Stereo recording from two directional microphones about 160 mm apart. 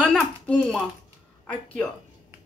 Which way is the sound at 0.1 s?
5° left (ahead or behind).